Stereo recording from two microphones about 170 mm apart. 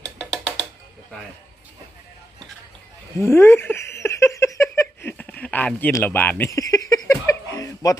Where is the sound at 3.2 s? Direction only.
15° left (ahead or behind).